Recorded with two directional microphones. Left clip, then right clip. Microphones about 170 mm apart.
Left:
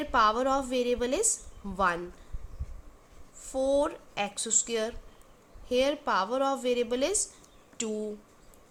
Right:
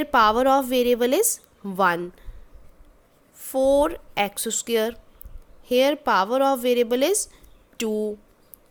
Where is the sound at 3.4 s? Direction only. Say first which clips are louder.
Right 8 dB; 50° right (ahead or behind).